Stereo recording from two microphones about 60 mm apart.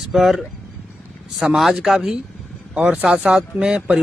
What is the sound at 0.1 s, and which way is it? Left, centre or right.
Speech, centre.